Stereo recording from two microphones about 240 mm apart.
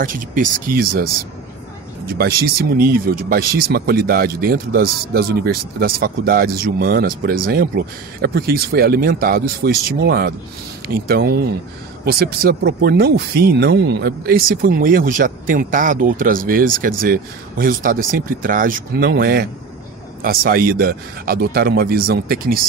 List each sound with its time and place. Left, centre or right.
0.0 s speech: right